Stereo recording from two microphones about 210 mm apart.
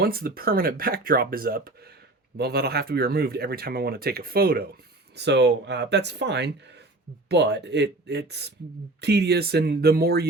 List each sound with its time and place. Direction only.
0.0 s speech: 45° right (ahead or behind)